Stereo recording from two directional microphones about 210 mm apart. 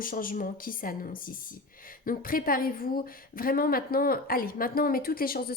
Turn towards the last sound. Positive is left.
turn(degrees=45)  # may be behind; listen again after turning